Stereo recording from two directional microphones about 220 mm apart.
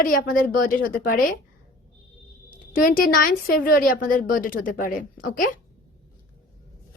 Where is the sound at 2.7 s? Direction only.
40° left (ahead or behind).